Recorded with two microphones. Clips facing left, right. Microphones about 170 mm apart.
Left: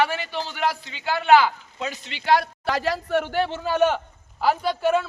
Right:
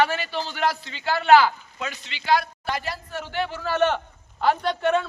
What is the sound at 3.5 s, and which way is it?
Speech, 20° left (ahead or behind).